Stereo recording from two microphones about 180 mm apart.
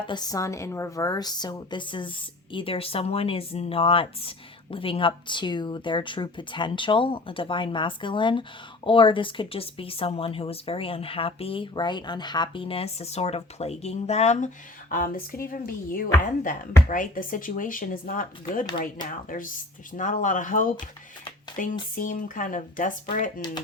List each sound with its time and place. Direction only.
0.1 s a woman's voice: 20° left (ahead or behind); by 23.0 s 45° left (ahead or behind)